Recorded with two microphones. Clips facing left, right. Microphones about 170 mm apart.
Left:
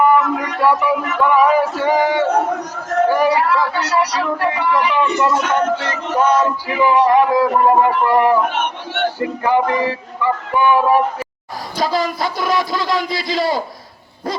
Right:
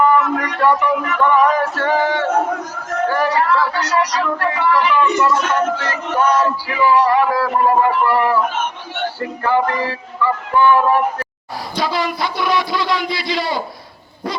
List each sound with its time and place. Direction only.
0.0 s a sound: 5° left (ahead or behind)
3.1 s speech: 10° left (ahead or behind)
9.1 s music: 15° left (ahead or behind)
11.8 s a man's voice: 40° left (ahead or behind)